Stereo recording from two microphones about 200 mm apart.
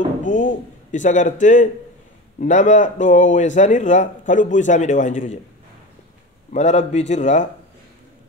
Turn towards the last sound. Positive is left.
turn(degrees=35)  # may be behind; listen again after turning